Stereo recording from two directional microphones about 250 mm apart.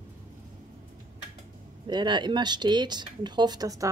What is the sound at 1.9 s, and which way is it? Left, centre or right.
Speech, centre.